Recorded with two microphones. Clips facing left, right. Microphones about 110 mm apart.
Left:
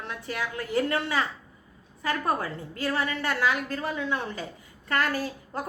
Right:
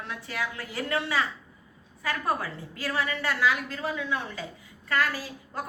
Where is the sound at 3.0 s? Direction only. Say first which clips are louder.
Right 2 dB; 40° left (ahead or behind).